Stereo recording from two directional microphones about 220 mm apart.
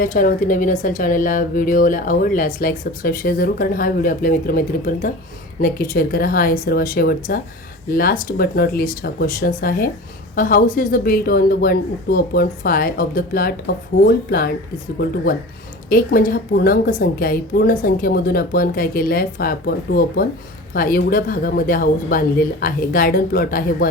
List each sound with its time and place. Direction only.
0.0 s speech: 40° left (ahead or behind)